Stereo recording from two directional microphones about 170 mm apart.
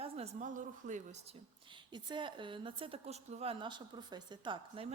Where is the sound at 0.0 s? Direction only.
40° right (ahead or behind).